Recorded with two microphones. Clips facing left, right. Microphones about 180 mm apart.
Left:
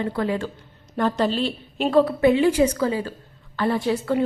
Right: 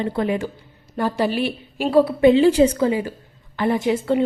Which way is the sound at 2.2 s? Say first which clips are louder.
Right 4 dB; 30° right (ahead or behind).